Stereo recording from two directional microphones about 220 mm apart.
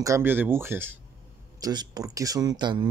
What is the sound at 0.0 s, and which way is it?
Speech, 10° right (ahead or behind).